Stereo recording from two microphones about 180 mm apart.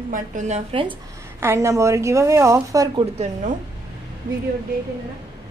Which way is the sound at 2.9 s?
40° right (ahead or behind).